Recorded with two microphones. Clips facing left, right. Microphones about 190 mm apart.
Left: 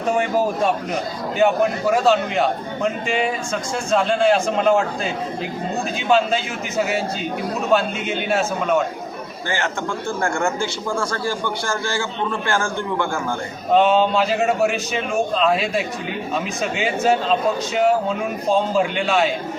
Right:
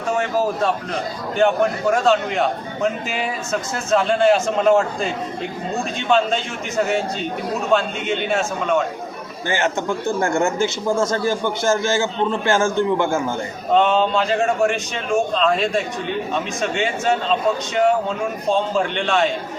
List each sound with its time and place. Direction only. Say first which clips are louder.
0.2 s a man's voice: left 1 dB; 15° left (ahead or behind)
9.5 s speech: right 4 dB; 20° right (ahead or behind)
13.7 s a man's voice: left 1 dB; 5° left (ahead or behind)
18.8 s a man's voice: left 1 dB; 5° left (ahead or behind)